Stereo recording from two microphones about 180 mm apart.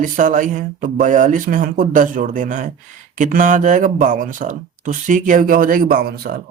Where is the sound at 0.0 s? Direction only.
45° right (ahead or behind).